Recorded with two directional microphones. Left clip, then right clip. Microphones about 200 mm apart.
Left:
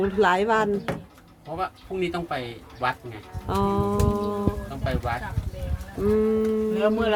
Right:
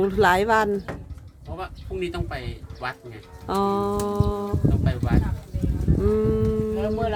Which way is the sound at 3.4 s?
25° right (ahead or behind).